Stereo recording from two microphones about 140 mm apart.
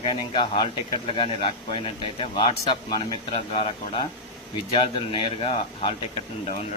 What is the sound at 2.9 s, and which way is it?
Speech, 30° left (ahead or behind).